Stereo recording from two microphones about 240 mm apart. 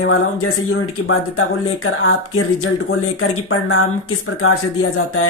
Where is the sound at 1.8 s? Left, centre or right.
Left.